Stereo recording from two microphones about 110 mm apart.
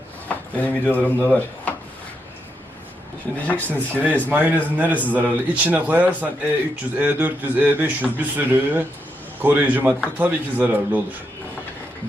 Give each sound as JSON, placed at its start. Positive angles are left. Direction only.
{"t": 0.3, "sound": "speech", "side_deg": 15}
{"t": 3.3, "sound": "speech", "side_deg": 15}
{"t": 3.8, "sound": "a man's voice", "side_deg": -15}